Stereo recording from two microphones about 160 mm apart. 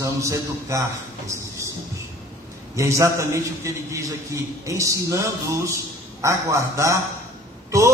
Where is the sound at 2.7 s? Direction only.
20° right (ahead or behind).